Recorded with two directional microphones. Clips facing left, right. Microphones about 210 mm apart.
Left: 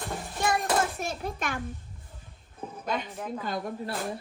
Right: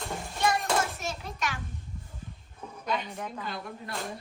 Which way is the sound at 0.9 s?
50° left (ahead or behind).